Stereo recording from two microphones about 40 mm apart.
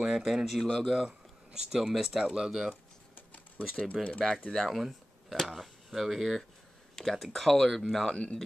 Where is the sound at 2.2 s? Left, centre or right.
Right.